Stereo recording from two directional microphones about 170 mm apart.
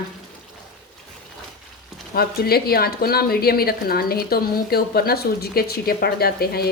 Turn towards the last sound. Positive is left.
turn(degrees=65)  # may be behind; listen again after turning